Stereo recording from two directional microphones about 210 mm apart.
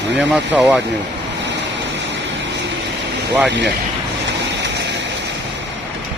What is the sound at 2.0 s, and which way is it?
Vehicle, 60° right (ahead or behind).